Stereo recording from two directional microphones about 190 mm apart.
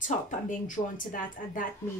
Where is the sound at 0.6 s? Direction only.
45° left (ahead or behind).